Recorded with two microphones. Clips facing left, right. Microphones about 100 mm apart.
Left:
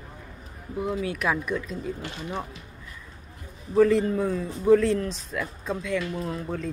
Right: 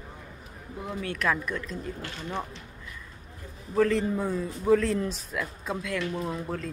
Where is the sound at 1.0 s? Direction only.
10° left (ahead or behind).